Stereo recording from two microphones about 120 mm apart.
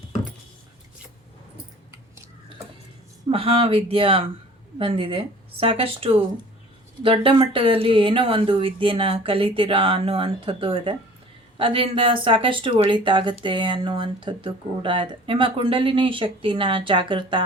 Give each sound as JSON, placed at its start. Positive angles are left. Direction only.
{"t": 3.2, "sound": "speech", "side_deg": -50}